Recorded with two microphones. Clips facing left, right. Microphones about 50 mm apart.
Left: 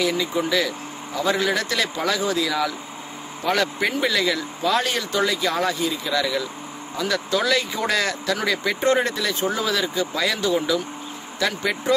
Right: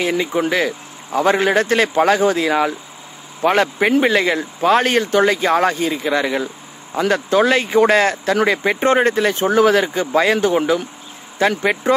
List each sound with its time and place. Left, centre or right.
0.0 s speech: right